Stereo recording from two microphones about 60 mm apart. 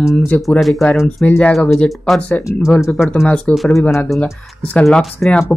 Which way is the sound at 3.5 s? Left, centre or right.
Centre.